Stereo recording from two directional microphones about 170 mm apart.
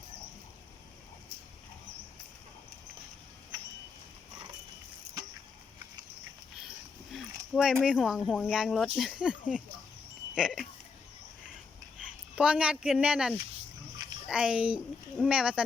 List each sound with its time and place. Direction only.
7.5 s speech: centre (ahead or behind)
12.4 s a child's voice: 5° right (ahead or behind)